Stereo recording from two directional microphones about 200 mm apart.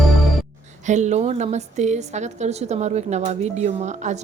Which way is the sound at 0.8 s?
35° right (ahead or behind).